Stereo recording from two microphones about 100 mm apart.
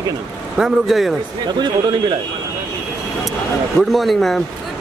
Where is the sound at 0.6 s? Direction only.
Centre (ahead or behind).